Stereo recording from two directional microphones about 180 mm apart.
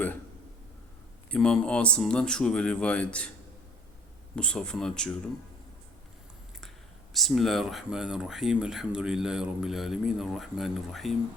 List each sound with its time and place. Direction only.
1.3 s speech: 5° left (ahead or behind)
4.4 s speech: 5° left (ahead or behind)
7.1 s speech: centre (ahead or behind)